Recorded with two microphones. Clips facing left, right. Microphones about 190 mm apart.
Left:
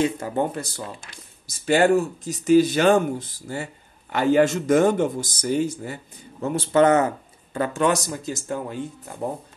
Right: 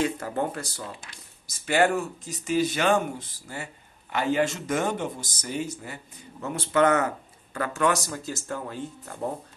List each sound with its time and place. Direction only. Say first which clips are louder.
0.0 s speech: left 4 dB; 20° left (ahead or behind)
1.7 s speech: left 5 dB; 30° left (ahead or behind)